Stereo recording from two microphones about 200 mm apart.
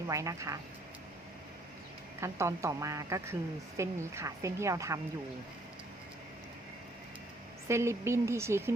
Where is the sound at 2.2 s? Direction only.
15° right (ahead or behind).